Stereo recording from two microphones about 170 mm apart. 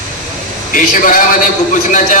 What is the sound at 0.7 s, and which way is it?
A man's voice, 50° left (ahead or behind).